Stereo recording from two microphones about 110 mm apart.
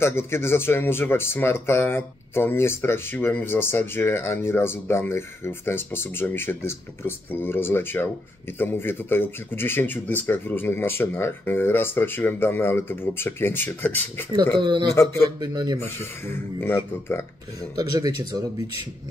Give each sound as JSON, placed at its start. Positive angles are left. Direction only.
{"t": 0.0, "sound": "speech", "side_deg": 20}
{"t": 14.6, "sound": "a man's voice", "side_deg": -45}
{"t": 16.5, "sound": "speech", "side_deg": 20}
{"t": 17.7, "sound": "speech", "side_deg": -35}